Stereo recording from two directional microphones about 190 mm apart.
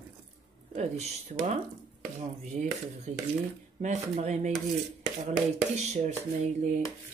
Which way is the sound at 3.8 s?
40° right (ahead or behind).